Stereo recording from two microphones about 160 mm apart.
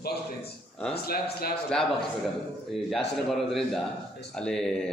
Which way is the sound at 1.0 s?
70° left (ahead or behind).